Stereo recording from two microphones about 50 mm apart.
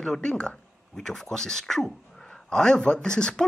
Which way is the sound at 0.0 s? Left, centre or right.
Centre.